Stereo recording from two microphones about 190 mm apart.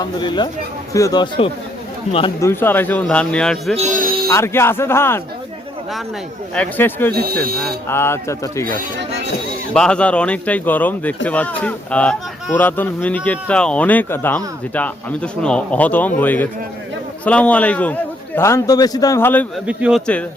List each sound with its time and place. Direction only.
0.0 s speech: 25° left (ahead or behind)
2.4 s speech: 10° left (ahead or behind)
3.8 s a man's voice: 45° right (ahead or behind)
4.3 s speech: 15° left (ahead or behind)
6.5 s speech: 10° left (ahead or behind)
7.1 s speech: 55° right (ahead or behind)
7.9 s speech: 15° left (ahead or behind)
9.7 s speech: 5° left (ahead or behind)
19.6 s speech: 5° right (ahead or behind)